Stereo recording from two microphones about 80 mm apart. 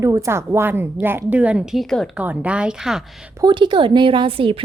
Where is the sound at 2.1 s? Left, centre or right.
Centre.